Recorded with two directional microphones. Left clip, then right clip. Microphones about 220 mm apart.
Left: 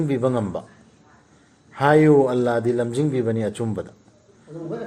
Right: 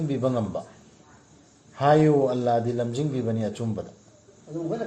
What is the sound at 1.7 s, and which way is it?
A man's voice, 50° left (ahead or behind).